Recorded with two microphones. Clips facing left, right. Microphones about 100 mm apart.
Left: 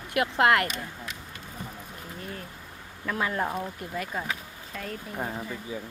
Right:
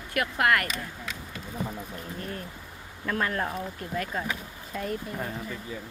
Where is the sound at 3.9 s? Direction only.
5° left (ahead or behind).